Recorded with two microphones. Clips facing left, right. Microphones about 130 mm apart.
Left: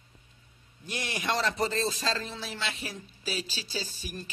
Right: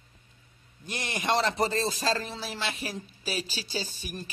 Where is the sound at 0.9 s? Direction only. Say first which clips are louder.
Right 3 dB; 50° right (ahead or behind).